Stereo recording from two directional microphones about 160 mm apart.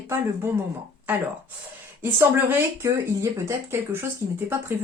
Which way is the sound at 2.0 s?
15° right (ahead or behind).